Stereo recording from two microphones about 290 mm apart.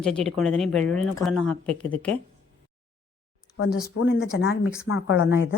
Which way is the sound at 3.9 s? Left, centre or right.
Left.